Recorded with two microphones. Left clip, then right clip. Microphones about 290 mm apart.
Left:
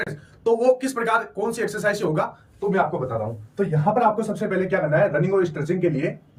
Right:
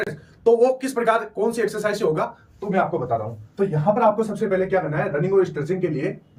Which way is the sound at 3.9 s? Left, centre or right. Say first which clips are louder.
Right 1 dB; centre.